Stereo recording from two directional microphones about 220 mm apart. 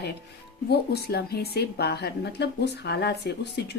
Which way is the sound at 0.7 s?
45° left (ahead or behind).